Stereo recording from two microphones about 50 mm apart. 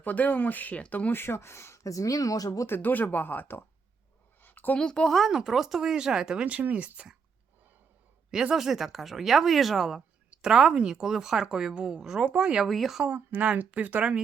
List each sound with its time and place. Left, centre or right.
0.0 s speech: left
1.1 s speech: left
2.6 s speech: left
4.4 s a sound: left
4.8 s speech: centre
5.0 s speech: centre
5.3 s a woman's voice: centre
6.4 s a woman's voice: right
8.3 s a woman's voice: centre
12.6 s speech: centre
13.4 s a woman's voice: right